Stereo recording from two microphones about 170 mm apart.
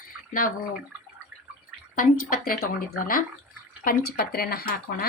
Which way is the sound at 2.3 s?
55° left (ahead or behind).